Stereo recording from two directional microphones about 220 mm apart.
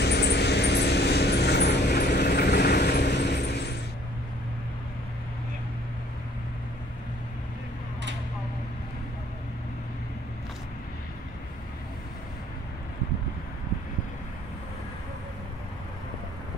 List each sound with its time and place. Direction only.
0.0 s vehicle: 50° left (ahead or behind)